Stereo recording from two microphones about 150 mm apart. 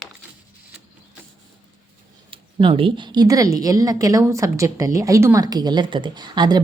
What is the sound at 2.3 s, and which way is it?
A woman's voice, 35° right (ahead or behind).